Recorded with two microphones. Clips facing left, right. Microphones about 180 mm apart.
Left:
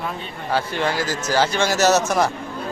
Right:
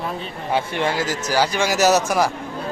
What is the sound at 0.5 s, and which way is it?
Speech, 25° right (ahead or behind).